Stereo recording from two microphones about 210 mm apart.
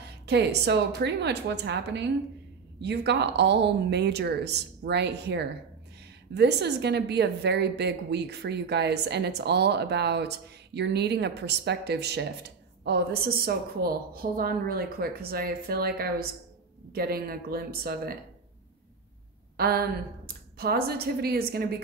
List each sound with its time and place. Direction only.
0.3 s a woman's voice: 55° right (ahead or behind)
19.5 s a woman's voice: 45° right (ahead or behind)